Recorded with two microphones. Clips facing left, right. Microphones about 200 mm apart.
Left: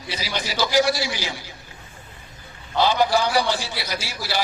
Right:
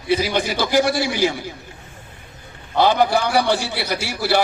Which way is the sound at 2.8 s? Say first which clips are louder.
Right 3 dB; 55° right (ahead or behind).